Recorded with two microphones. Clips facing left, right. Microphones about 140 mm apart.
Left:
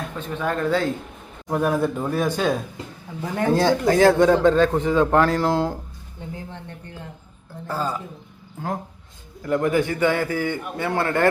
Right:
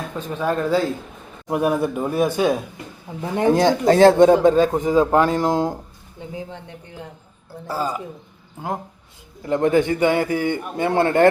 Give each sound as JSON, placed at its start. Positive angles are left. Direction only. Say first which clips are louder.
{"t": 0.3, "sound": "speech", "louder": "right 2 dB", "side_deg": -10}
{"t": 7.7, "sound": "speech", "louder": "right 2 dB", "side_deg": -10}
{"t": 9.4, "sound": "a man's voice", "louder": "right 3 dB", "side_deg": -25}